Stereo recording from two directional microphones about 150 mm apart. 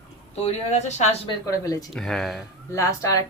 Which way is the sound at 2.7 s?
20° left (ahead or behind).